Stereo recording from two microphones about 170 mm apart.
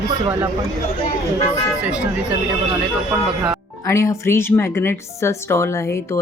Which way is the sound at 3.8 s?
15° left (ahead or behind).